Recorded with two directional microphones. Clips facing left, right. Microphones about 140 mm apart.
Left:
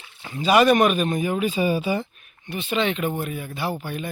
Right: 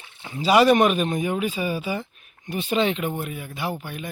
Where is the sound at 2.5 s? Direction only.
40° right (ahead or behind).